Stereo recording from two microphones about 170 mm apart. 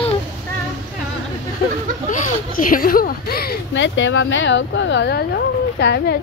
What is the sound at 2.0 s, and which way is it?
Speech, 55° left (ahead or behind).